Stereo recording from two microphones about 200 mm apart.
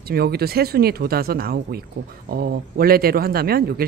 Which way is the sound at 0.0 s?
50° right (ahead or behind).